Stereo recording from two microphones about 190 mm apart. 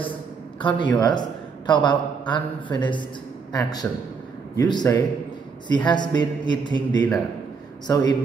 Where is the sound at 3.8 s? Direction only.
10° left (ahead or behind).